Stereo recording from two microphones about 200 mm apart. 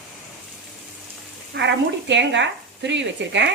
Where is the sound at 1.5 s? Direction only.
60° right (ahead or behind).